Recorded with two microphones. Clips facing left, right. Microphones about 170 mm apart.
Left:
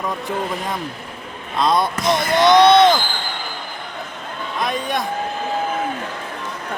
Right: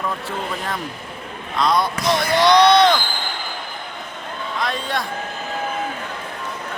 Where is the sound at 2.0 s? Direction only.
20° left (ahead or behind).